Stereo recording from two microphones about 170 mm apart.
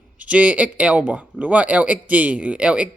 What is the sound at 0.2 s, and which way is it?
Speech, 10° right (ahead or behind).